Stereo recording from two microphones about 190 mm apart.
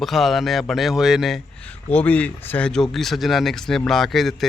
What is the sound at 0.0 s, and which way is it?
Speech, centre (ahead or behind).